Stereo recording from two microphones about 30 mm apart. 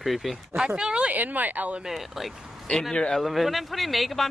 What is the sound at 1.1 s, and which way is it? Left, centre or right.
Speech, right.